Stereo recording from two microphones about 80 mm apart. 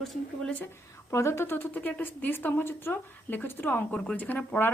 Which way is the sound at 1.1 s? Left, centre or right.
Left.